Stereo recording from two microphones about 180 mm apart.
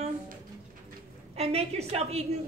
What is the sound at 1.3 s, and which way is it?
Speech, 35° right (ahead or behind).